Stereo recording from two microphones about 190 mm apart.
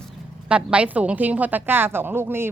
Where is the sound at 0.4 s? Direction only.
5° right (ahead or behind).